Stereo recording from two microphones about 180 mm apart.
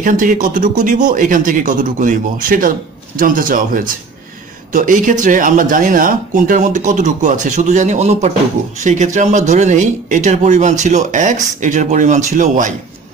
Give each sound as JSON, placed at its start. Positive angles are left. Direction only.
{"t": 0.0, "sound": "speech", "side_deg": -50}